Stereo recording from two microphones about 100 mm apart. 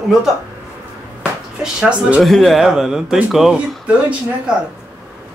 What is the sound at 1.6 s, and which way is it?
Speech, 10° right (ahead or behind).